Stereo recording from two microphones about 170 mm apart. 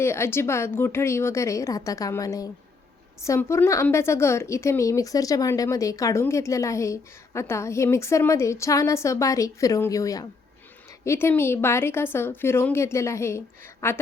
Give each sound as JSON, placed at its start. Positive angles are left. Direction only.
{"t": 0.0, "sound": "a woman's voice", "side_deg": 15}